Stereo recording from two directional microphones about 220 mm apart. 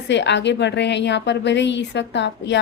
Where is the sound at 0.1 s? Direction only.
55° left (ahead or behind).